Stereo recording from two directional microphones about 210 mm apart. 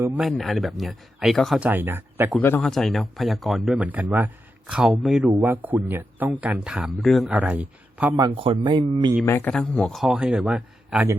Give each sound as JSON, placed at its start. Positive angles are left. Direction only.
{"t": 0.0, "sound": "speech", "side_deg": -5}
{"t": 2.4, "sound": "speech", "side_deg": 5}
{"t": 8.2, "sound": "speech", "side_deg": -25}
{"t": 9.2, "sound": "speech", "side_deg": 10}